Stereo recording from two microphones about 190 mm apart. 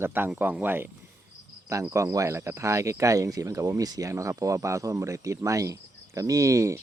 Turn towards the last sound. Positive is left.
turn(degrees=-15)  # may be behind; listen again after turning